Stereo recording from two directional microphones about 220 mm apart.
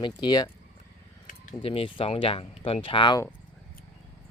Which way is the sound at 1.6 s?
25° left (ahead or behind).